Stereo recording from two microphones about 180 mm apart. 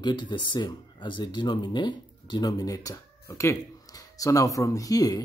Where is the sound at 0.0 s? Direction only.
25° left (ahead or behind).